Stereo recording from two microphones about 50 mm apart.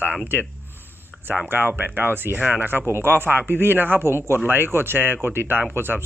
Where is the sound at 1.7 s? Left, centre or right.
Right.